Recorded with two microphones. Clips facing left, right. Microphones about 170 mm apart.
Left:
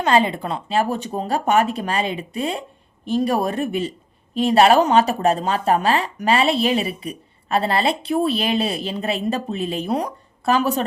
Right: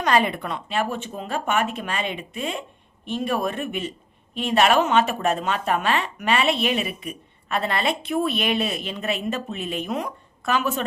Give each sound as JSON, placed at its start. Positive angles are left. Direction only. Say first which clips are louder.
{"t": 0.0, "sound": "speech", "louder": "left 3 dB", "side_deg": 25}